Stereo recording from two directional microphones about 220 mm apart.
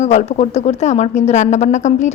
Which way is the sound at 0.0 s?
30° left (ahead or behind).